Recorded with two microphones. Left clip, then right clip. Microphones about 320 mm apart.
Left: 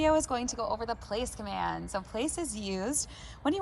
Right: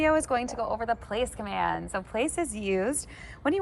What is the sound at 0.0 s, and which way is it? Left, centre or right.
Speech, centre.